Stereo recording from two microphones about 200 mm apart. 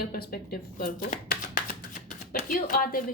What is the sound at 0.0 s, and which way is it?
Speech, 50° left (ahead or behind).